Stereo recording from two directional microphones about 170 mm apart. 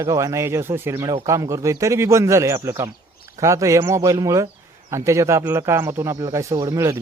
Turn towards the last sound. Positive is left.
turn(degrees=-20)  # may be behind; listen again after turning